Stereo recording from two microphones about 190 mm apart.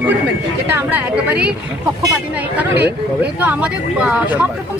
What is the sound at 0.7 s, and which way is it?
A woman's voice, 10° right (ahead or behind).